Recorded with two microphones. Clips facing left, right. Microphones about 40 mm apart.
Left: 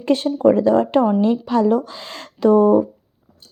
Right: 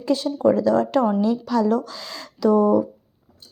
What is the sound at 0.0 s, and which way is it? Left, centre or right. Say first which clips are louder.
Speech: left 4 dB; left.